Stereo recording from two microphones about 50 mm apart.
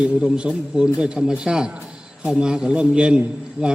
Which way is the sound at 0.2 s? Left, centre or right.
Centre.